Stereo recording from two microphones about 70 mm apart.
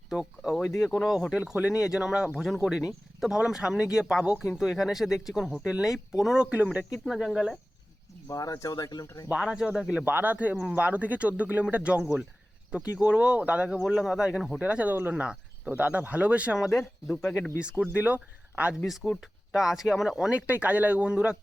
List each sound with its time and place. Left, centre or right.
0.1 s a sound: centre
0.8 s speech: centre
1.3 s speech: centre
7.1 s speech: centre
8.3 s speech: left
9.3 s speech: centre
10.0 s speech: right
13.7 s speech: centre
16.6 s speech: centre
17.6 s speech: centre
18.9 s speech: centre
20.3 s speech: right